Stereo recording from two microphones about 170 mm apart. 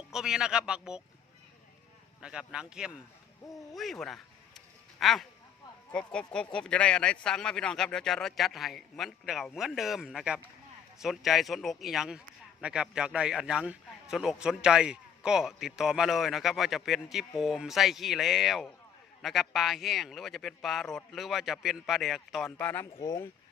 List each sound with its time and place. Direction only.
0.1 s a man's voice: 5° right (ahead or behind)
2.2 s a man's voice: 5° right (ahead or behind)
3.8 s a sound: centre (ahead or behind)
5.9 s a man's voice: 5° left (ahead or behind)